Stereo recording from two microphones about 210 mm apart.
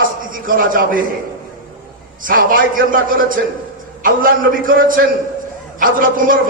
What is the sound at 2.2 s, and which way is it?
A man's voice, 40° right (ahead or behind).